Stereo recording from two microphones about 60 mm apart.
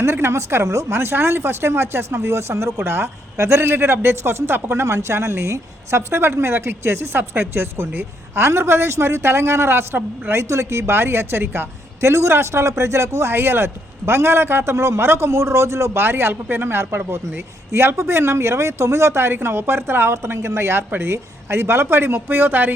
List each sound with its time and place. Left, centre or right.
0.0 s a woman's voice: right